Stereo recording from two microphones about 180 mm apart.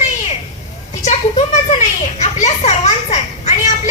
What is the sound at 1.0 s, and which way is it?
A woman's voice, 40° left (ahead or behind).